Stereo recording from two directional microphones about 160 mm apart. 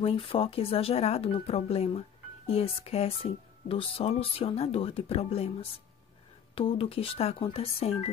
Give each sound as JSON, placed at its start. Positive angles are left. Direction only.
{"t": 0.0, "sound": "speech", "side_deg": 35}